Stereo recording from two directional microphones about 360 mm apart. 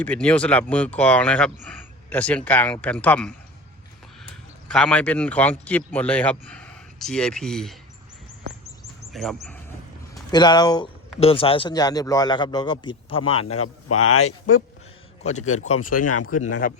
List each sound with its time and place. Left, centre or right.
0.0 s speech: centre
4.7 s speech: centre
9.1 s speech: centre
10.3 s speech: centre
13.6 s speech: left
15.2 s a man's voice: centre
15.4 s speech: left